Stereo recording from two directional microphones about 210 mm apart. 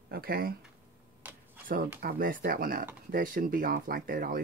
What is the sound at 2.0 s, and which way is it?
Speech, 40° right (ahead or behind).